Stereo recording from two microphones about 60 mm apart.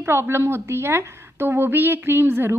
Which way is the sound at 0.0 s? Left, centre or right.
Right.